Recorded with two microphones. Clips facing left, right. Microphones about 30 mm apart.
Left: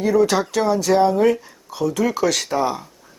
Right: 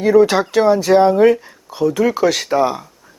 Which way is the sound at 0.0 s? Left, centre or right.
Right.